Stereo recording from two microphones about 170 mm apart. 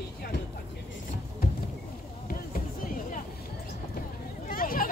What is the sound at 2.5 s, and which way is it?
Music, 55° left (ahead or behind).